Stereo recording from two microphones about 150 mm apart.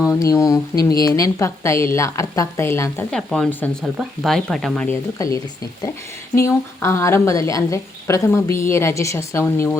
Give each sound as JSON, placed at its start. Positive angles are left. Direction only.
{"t": 0.0, "sound": "a woman's voice", "side_deg": 20}
{"t": 3.1, "sound": "speech", "side_deg": 5}
{"t": 5.1, "sound": "a woman's voice", "side_deg": 20}
{"t": 6.4, "sound": "a woman's voice", "side_deg": 20}